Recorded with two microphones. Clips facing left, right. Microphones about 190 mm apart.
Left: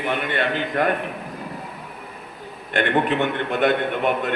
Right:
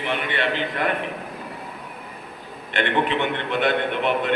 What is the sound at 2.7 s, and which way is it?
A man's voice, 45° left (ahead or behind).